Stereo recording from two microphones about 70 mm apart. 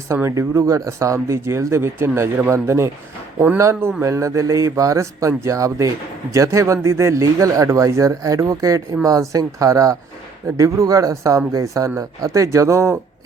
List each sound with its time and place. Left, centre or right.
0.1 s speech: right
4.0 s speech: right